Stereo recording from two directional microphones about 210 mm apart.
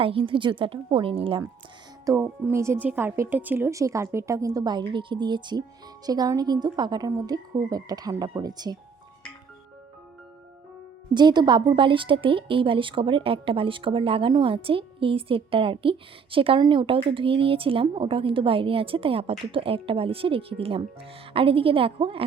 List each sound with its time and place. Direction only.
0.0 s a woman's voice: 25° right (ahead or behind)
2.0 s a woman's voice: 10° right (ahead or behind)
11.1 s a woman's voice: 20° right (ahead or behind)